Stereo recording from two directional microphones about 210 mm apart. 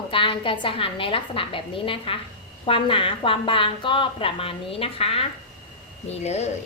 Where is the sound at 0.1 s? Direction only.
25° left (ahead or behind).